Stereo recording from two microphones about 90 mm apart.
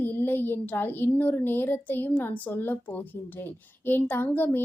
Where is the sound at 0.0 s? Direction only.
25° left (ahead or behind).